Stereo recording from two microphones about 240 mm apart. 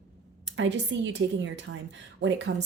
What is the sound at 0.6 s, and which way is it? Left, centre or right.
A woman's voice, right.